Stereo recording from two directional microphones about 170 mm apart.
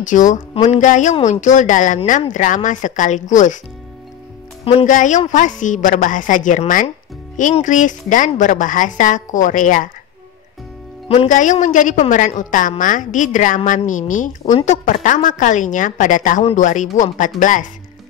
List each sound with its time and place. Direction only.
0.0 s a woman's voice: 45° left (ahead or behind)
4.8 s a woman's voice: 45° left (ahead or behind)
11.1 s a woman's voice: 45° left (ahead or behind)